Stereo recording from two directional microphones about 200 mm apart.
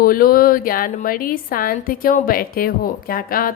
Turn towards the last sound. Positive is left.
turn(degrees=45)  # may be behind; listen again after turning